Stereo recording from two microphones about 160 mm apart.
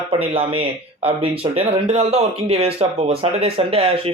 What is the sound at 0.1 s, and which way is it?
Speech, 35° right (ahead or behind).